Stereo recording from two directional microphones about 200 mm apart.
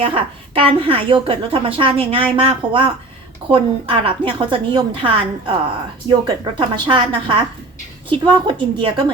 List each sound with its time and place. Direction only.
0.0 s a woman's voice: 25° right (ahead or behind)